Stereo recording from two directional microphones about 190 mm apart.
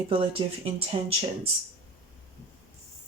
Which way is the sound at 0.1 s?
30° right (ahead or behind).